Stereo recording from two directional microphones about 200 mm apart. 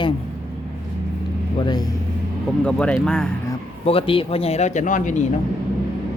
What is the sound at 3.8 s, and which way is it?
Speech, 30° left (ahead or behind).